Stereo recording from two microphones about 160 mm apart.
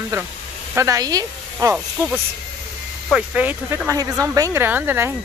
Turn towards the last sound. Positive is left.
turn(degrees=-15)  # may be behind; listen again after turning